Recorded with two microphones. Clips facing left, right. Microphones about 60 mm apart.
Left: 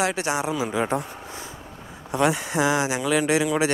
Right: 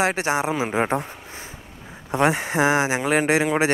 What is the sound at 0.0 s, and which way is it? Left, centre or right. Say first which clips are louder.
Speech: right 3 dB; right.